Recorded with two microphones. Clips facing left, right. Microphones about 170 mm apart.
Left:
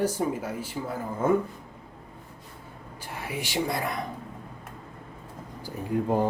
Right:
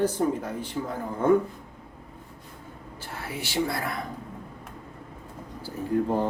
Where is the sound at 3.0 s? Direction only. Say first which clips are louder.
Left 1 dB; 15° left (ahead or behind).